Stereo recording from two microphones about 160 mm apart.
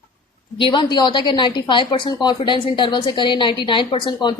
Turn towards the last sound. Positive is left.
turn(degrees=30)  # may be behind; listen again after turning